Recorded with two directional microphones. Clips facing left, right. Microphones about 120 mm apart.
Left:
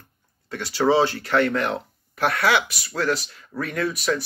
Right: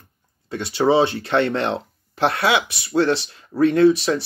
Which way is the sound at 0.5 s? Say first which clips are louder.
Right 2 dB; 25° right (ahead or behind).